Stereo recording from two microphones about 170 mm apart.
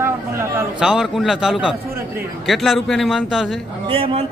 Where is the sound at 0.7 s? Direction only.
5° right (ahead or behind).